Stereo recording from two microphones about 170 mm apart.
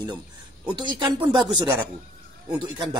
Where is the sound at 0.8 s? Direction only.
30° right (ahead or behind).